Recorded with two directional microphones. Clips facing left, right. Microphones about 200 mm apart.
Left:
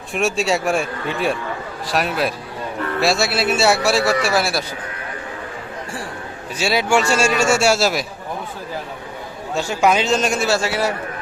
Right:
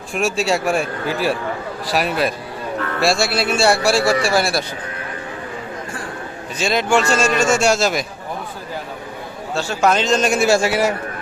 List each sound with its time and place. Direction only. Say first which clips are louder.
0.1 s speech: even; centre (ahead or behind)
4.0 s speech: right 1 dB; 30° right (ahead or behind)
4.3 s speech: right 1 dB; centre (ahead or behind)
6.6 s a man's voice: even; 5° left (ahead or behind)
9.6 s a man's voice: even; 15° left (ahead or behind)
10.3 s a man's voice: right 4 dB; 10° right (ahead or behind)